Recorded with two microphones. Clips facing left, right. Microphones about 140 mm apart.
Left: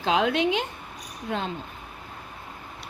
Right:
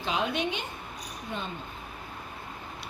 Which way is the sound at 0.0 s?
90° left.